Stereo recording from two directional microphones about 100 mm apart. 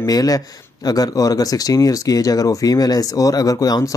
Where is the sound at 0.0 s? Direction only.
40° left (ahead or behind).